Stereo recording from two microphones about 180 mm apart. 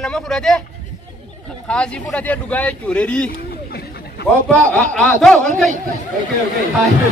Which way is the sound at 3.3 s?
55° left (ahead or behind).